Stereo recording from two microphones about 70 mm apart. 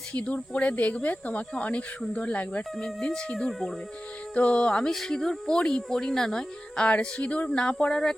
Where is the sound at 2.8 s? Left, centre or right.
Centre.